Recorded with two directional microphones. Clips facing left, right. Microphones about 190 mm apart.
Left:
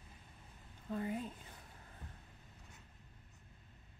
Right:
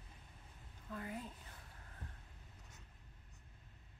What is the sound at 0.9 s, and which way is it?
Speech, 25° left (ahead or behind).